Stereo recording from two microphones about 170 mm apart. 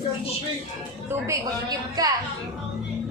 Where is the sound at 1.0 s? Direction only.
20° right (ahead or behind).